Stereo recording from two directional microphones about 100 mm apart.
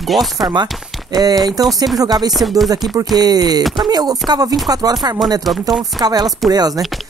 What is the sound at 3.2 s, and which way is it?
Speech, 40° right (ahead or behind).